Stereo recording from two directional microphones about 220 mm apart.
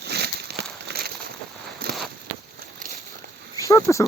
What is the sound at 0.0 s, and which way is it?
Walk, 50° right (ahead or behind).